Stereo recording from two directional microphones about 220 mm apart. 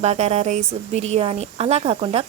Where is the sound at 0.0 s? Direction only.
30° right (ahead or behind).